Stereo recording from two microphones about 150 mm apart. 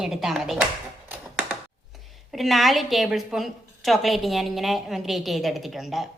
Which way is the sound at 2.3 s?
Centre (ahead or behind).